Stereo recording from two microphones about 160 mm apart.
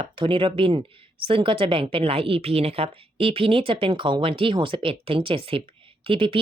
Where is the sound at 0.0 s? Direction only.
30° right (ahead or behind).